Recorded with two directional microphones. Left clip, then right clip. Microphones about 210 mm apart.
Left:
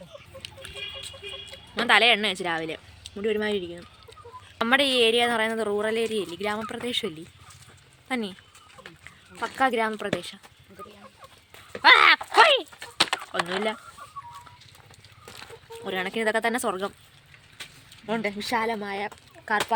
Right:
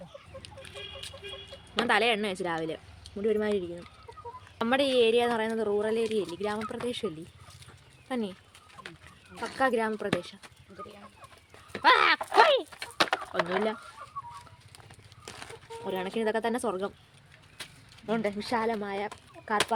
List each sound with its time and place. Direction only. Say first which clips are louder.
0.4 s a sound: left 7 dB; 5° left (ahead or behind)
1.8 s a woman's voice: left 6 dB; centre (ahead or behind)
9.6 s a woman's voice: left 3 dB; 10° left (ahead or behind)
11.8 s horse: left 6 dB; 10° left (ahead or behind)
12.4 s a sound: left 3 dB; 5° left (ahead or behind)
13.2 s speech: left 1 dB; 20° right (ahead or behind)
15.9 s a woman's voice: left 4 dB; 10° left (ahead or behind)
17.6 s mechanisms: left 2 dB; 60° right (ahead or behind)
18.0 s speech: left 2 dB; 5° left (ahead or behind)